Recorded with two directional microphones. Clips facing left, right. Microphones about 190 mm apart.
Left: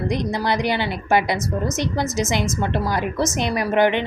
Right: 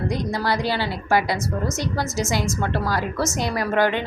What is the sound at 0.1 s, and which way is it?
A woman's voice, 20° left (ahead or behind).